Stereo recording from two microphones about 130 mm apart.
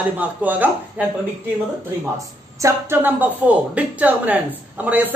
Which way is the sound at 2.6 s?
20° right (ahead or behind).